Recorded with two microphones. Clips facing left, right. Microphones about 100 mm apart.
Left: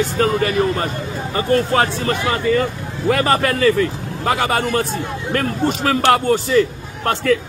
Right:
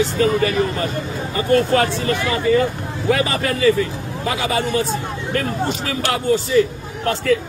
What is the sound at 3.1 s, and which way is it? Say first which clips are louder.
A man's voice: left 4 dB; 55° left (ahead or behind).